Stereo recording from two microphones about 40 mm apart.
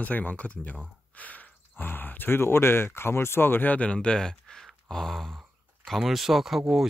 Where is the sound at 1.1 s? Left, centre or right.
Left.